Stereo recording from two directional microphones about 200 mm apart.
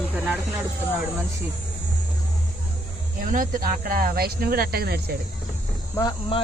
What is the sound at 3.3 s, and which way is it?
Speech, 45° right (ahead or behind).